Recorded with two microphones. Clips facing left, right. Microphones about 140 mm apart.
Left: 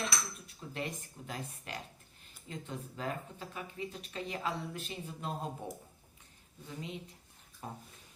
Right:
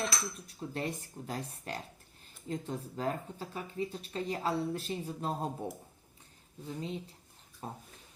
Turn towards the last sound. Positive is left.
turn(degrees=-35)  # may be behind; listen again after turning